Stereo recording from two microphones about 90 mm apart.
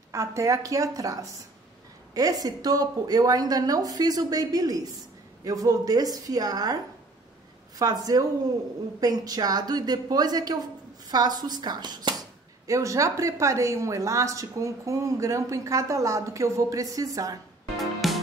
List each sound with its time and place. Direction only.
0.1 s a woman's voice: 35° right (ahead or behind)
7.8 s a woman's voice: 45° right (ahead or behind)
12.6 s a woman's voice: 35° right (ahead or behind)
17.7 s music: centre (ahead or behind)